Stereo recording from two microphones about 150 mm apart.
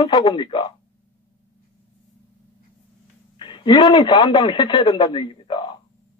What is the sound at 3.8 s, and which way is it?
A man's voice, 25° left (ahead or behind).